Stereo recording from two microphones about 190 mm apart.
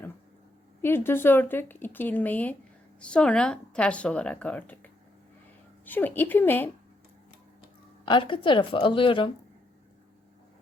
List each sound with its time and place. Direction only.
0.8 s speech: 10° left (ahead or behind)
8.0 s a woman's voice: 25° left (ahead or behind)